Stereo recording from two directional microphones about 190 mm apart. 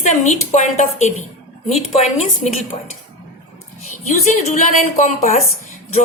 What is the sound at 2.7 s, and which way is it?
Speech, 35° left (ahead or behind).